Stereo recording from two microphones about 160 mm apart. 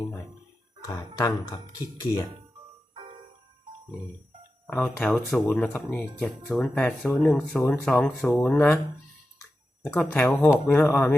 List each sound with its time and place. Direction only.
0.9 s speech: 20° left (ahead or behind)
4.6 s speech: 10° left (ahead or behind)
9.8 s speech: 10° left (ahead or behind)